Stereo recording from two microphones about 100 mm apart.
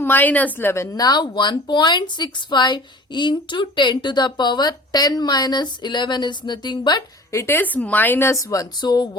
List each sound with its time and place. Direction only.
0.0 s speech: 20° left (ahead or behind)
0.9 s speech: 45° left (ahead or behind)
7.3 s speech: 20° left (ahead or behind); by 9.0 s 45° left (ahead or behind)